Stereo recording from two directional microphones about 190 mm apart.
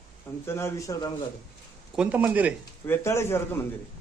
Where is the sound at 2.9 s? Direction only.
15° left (ahead or behind).